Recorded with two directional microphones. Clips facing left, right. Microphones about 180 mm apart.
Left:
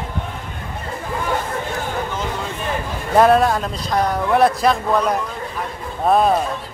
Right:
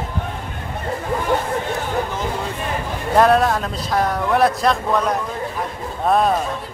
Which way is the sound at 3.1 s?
Centre (ahead or behind).